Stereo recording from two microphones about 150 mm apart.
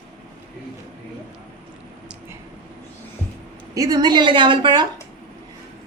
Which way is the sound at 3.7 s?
25° right (ahead or behind).